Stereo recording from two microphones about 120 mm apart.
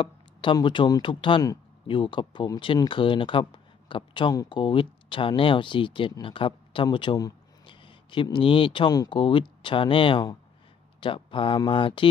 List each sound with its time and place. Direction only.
0.0 s speech: 45° left (ahead or behind)